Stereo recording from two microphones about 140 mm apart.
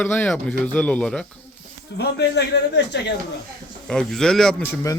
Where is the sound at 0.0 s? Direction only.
10° left (ahead or behind).